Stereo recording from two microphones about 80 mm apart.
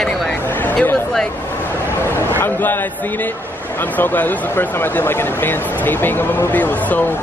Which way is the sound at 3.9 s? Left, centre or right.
Left.